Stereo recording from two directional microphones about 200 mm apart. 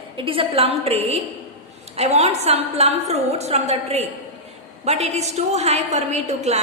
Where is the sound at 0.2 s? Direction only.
25° right (ahead or behind).